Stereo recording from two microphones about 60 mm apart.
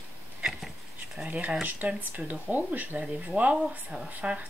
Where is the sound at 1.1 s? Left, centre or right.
Centre.